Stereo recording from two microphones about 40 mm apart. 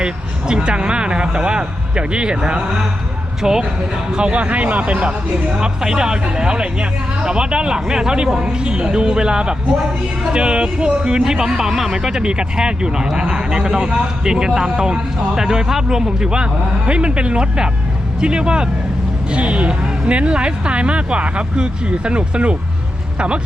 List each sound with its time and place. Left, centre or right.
0.0 s speech: right
4.1 s speech: right